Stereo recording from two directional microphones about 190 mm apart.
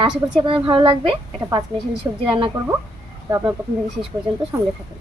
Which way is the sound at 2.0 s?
20° right (ahead or behind).